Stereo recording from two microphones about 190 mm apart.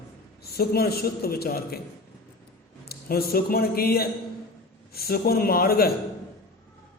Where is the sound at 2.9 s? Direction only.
55° left (ahead or behind).